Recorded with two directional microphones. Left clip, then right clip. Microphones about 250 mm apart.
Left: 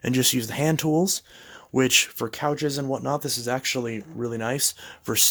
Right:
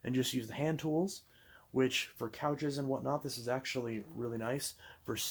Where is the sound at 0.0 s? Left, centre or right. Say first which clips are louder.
Left 12 dB; left.